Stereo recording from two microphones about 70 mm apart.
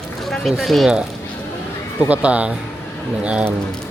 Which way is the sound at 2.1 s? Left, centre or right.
Centre.